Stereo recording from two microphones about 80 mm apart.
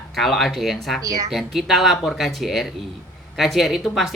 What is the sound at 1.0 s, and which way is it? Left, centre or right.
Speech, right.